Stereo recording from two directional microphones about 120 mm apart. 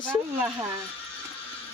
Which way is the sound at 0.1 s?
20° right (ahead or behind).